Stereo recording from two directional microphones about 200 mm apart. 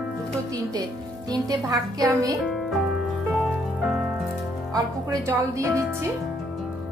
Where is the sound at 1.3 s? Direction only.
20° right (ahead or behind).